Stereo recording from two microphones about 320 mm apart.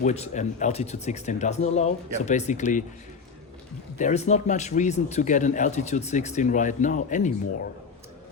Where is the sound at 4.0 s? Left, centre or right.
Left.